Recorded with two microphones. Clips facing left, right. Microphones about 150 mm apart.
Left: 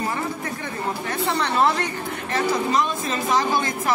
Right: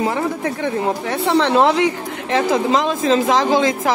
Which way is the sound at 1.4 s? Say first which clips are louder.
Right 6 dB; 85° right.